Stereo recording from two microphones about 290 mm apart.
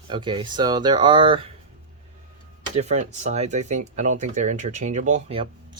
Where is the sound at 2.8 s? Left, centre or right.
Right.